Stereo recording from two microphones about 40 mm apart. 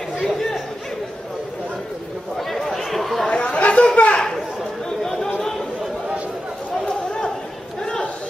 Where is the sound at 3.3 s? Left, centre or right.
Left.